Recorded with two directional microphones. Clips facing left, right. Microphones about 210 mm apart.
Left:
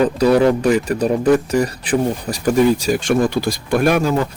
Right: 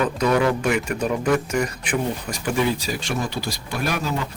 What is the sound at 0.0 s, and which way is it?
Speech, 35° left (ahead or behind).